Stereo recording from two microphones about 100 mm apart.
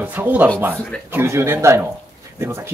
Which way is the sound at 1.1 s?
25° right (ahead or behind).